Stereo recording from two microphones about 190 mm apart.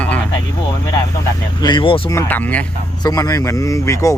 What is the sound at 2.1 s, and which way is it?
Speech, 10° left (ahead or behind).